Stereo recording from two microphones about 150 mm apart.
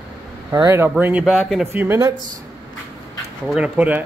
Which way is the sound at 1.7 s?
15° right (ahead or behind).